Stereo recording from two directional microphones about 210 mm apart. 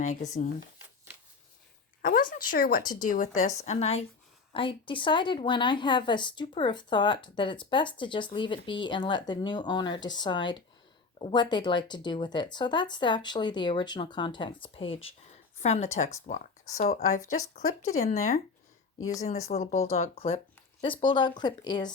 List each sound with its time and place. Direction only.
0.0 s speech: 35° left (ahead or behind)
2.0 s a sound: 45° left (ahead or behind)
2.3 s speech: 45° left (ahead or behind); by 21.9 s 20° left (ahead or behind)